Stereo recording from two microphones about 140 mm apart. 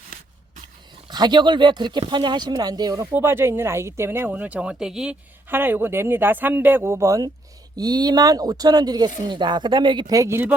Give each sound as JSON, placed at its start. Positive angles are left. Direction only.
{"t": 1.1, "sound": "speech", "side_deg": -30}
{"t": 3.1, "sound": "speech", "side_deg": -15}
{"t": 5.5, "sound": "speech", "side_deg": -15}